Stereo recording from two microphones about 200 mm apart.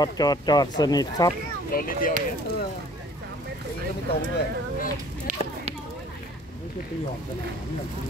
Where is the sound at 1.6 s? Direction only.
45° left (ahead or behind).